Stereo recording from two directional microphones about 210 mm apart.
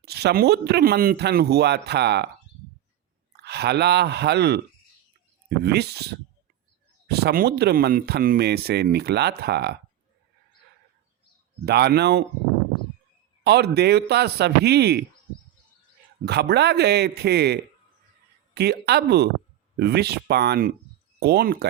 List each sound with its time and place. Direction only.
0.0 s speech: 50° right (ahead or behind)
3.4 s speech: 50° right (ahead or behind)
11.6 s speech: 50° right (ahead or behind)
13.4 s speech: 50° right (ahead or behind)
16.2 s speech: 50° right (ahead or behind)